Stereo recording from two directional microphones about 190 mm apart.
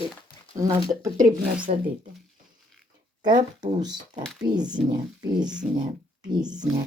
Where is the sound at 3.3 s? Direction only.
40° right (ahead or behind).